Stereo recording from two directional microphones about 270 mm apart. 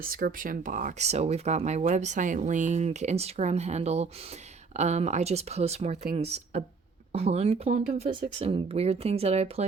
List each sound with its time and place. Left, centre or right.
0.0 s speech: right